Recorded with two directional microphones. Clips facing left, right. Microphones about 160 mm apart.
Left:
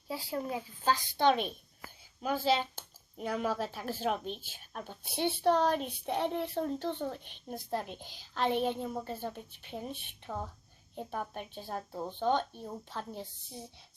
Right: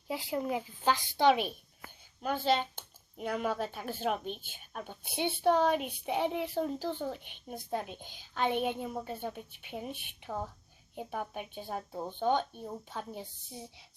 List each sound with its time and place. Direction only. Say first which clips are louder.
0.1 s a woman's voice: right 2 dB; 20° right (ahead or behind)
2.2 s speech: even; 5° left (ahead or behind)